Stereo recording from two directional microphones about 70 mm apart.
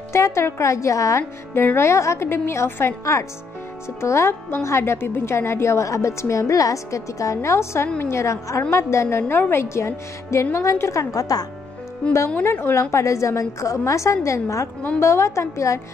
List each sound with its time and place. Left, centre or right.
0.1 s a woman's voice: left
1.5 s a woman's voice: left
12.4 s a woman's voice: left
12.9 s a woman's voice: left